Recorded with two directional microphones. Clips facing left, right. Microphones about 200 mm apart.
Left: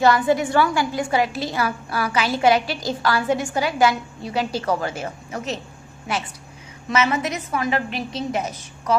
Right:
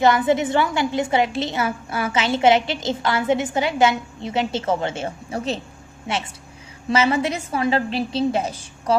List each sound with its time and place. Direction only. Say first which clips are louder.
0.0 s a woman's voice: even; 20° right (ahead or behind)